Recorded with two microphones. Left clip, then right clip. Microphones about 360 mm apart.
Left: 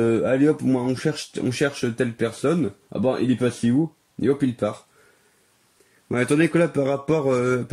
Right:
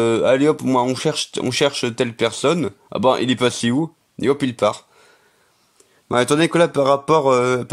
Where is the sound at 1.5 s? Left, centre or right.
Centre.